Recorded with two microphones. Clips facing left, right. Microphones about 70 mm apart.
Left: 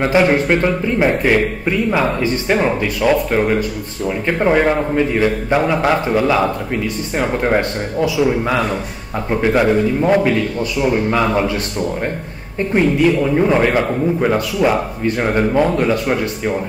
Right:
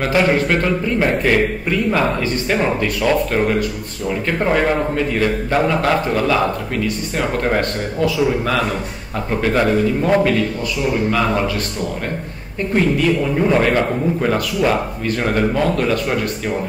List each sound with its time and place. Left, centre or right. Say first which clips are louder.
0.0 s a man's voice: left 2 dB; left
9.6 s a man's voice: left 1 dB; centre
10.8 s speech: left 2 dB; left
12.7 s a man's voice: left 2 dB; centre